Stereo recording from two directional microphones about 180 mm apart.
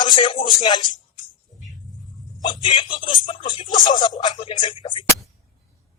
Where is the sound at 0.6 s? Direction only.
25° left (ahead or behind).